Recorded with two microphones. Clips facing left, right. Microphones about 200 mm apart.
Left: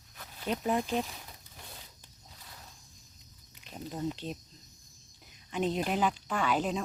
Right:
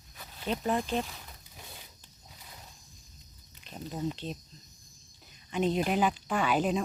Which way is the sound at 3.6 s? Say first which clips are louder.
Right 1 dB; 5° left (ahead or behind).